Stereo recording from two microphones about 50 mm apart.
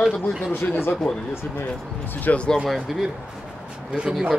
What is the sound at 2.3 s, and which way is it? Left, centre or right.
Speech, left.